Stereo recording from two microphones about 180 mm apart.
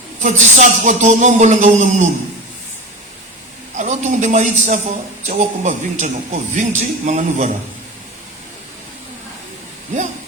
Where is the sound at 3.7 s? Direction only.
40° right (ahead or behind).